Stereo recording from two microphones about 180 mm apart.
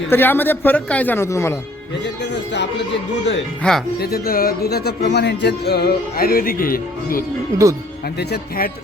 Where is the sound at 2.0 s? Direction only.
75° left (ahead or behind).